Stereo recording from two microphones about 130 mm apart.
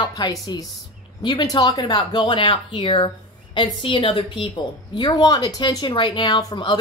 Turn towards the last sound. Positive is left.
turn(degrees=35)  # may be behind; listen again after turning